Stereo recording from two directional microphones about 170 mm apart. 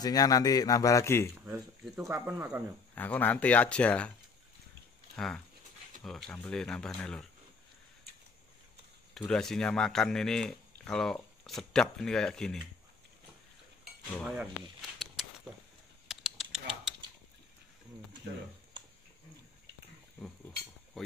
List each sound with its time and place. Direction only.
0.0 s speech: 20° left (ahead or behind)
1.4 s speech: 15° right (ahead or behind)
2.9 s speech: 10° left (ahead or behind)
5.1 s speech: 5° left (ahead or behind)
9.1 s speech: 5° left (ahead or behind)
14.2 s speech: 5° right (ahead or behind)
15.5 s a sound: centre (ahead or behind)